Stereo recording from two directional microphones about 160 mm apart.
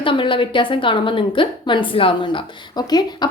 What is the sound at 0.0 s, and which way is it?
A woman's voice, 30° left (ahead or behind).